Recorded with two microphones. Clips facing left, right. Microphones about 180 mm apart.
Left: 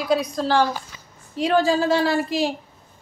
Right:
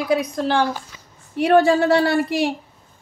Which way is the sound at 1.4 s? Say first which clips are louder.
Right 4 dB; 65° right (ahead or behind).